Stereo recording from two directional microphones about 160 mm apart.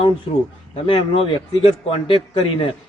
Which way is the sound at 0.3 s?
35° left (ahead or behind).